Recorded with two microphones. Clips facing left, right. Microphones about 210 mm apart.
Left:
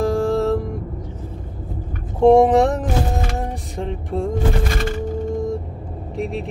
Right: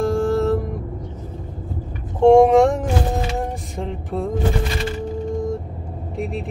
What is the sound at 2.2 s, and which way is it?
Speech, centre (ahead or behind).